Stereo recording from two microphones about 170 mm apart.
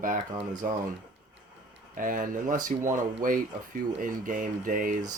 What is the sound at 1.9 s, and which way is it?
Speech, 50° right (ahead or behind).